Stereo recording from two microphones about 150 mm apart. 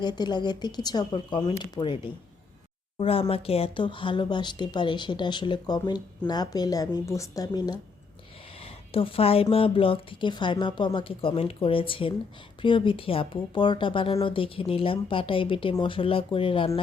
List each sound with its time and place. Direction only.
0.0 s speech: 30° left (ahead or behind)
8.6 s a woman's voice: 40° left (ahead or behind)